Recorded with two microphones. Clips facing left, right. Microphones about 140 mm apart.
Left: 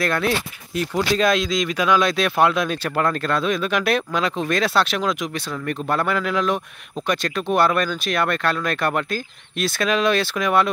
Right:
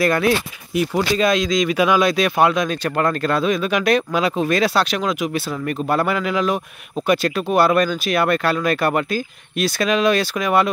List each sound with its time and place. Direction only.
0.0 s speech: 5° right (ahead or behind)